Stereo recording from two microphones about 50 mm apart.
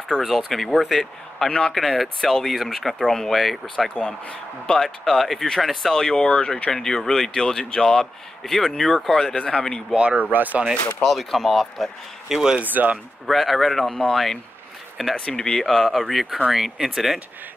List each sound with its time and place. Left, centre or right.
0.2 s speech: centre
6.2 s speech: left
6.7 s speech: centre
9.9 s speech: right
11.1 s speech: centre
12.5 s speech: right
13.3 s speech: centre
15.1 s speech: centre